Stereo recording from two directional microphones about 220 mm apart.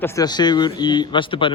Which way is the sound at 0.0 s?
15° left (ahead or behind).